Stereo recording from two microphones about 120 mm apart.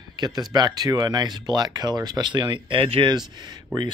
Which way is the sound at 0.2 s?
35° right (ahead or behind).